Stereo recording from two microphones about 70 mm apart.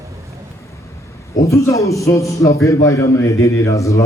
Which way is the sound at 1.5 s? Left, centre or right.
Left.